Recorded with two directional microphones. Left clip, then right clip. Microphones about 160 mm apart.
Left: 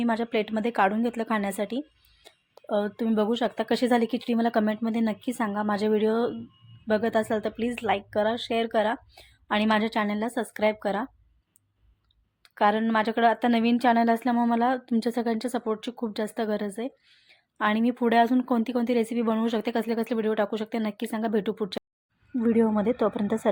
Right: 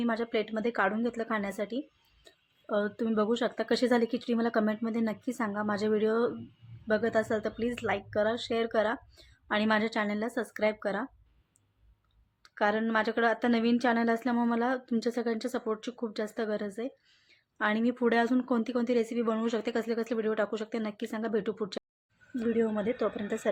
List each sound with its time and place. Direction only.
0.0 s a woman's voice: 20° left (ahead or behind)
2.2 s a woman's voice: 10° left (ahead or behind)
12.4 s a woman's voice: 15° left (ahead or behind)